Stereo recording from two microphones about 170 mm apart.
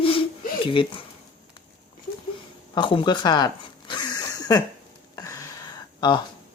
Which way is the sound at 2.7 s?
30° left (ahead or behind).